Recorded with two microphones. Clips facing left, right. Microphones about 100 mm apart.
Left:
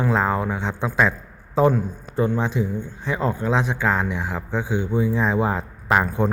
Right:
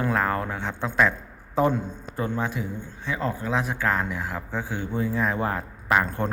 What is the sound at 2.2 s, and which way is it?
Speech, 20° left (ahead or behind).